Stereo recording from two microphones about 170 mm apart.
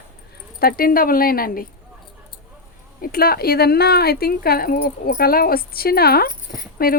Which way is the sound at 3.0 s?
60° left (ahead or behind).